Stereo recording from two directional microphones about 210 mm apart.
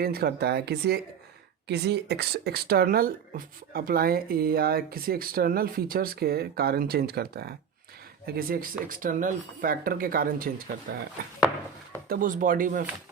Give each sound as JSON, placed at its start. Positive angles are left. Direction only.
{"t": 0.0, "sound": "speech", "side_deg": -45}
{"t": 12.0, "sound": "speech", "side_deg": -40}